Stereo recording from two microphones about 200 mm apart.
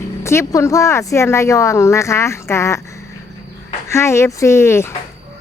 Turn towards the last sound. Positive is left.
turn(degrees=15)  # may be behind; listen again after turning